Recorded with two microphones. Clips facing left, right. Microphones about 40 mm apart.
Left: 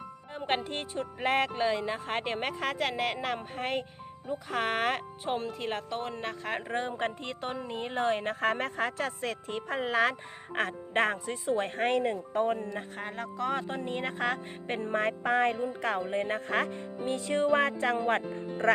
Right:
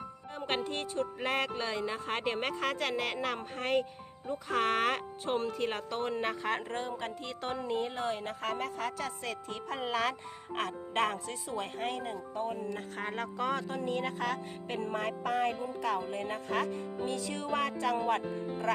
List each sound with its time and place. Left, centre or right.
0.3 s speech: left; by 6.5 s centre
6.8 s speech: left
7.4 s speech: centre
7.7 s speech: left
7.9 s speech: left
9.6 s speech: left
11.4 s speech: left
12.7 s speech: centre
13.5 s speech: left